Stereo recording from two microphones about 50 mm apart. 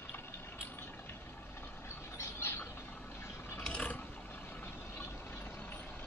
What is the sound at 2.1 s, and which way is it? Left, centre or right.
Squawk, left.